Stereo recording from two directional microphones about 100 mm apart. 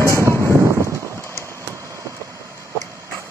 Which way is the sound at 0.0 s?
30° right (ahead or behind).